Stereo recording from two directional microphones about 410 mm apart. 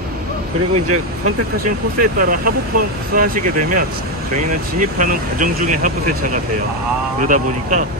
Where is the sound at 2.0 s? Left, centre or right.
Centre.